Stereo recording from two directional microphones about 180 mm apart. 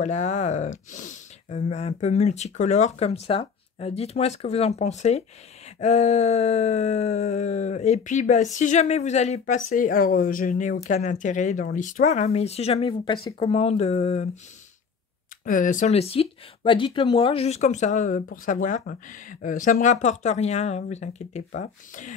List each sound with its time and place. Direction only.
0.0 s speech: 40° left (ahead or behind)
15.4 s speech: 45° left (ahead or behind)